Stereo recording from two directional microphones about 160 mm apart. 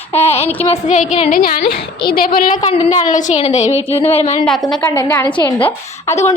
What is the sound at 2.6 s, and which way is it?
Speech, 45° left (ahead or behind).